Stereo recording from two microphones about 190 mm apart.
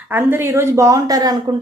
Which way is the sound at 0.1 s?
10° right (ahead or behind).